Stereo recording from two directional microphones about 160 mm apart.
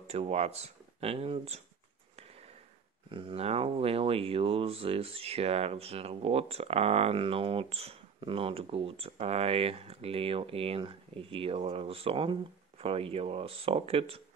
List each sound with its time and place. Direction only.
0.0 s speech: 40° right (ahead or behind)
3.1 s speech: 35° right (ahead or behind)